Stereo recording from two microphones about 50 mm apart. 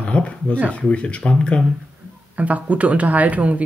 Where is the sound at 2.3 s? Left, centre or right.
Right.